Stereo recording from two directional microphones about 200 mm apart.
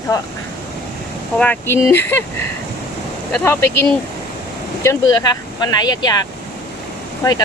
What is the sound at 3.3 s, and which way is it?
Speech, 10° left (ahead or behind).